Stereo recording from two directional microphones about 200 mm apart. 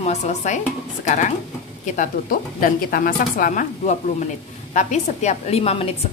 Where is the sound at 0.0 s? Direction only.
35° left (ahead or behind).